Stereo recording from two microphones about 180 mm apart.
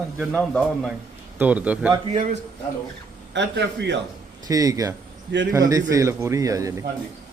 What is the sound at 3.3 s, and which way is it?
Speech, 75° right (ahead or behind).